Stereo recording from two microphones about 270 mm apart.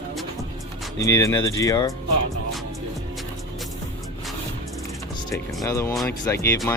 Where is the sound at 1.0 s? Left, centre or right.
Centre.